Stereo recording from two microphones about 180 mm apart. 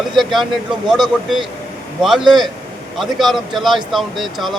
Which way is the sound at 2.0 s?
Centre (ahead or behind).